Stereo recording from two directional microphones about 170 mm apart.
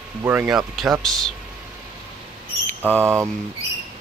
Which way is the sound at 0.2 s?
10° right (ahead or behind).